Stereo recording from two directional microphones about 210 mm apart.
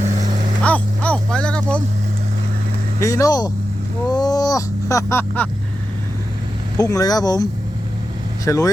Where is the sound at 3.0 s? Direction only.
15° left (ahead or behind).